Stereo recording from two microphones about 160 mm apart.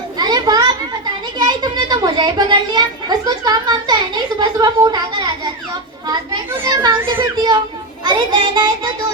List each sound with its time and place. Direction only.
0.2 s children playing: 25° right (ahead or behind)
1.4 s a child's voice: 25° right (ahead or behind)
6.7 s a child's voice: 25° right (ahead or behind)